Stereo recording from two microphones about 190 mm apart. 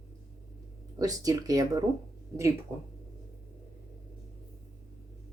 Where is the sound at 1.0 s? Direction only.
20° right (ahead or behind).